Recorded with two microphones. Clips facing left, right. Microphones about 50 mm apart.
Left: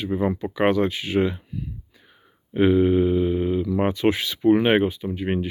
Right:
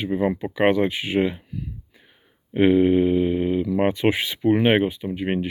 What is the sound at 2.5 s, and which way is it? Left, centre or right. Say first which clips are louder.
Speech: right 1 dB; centre.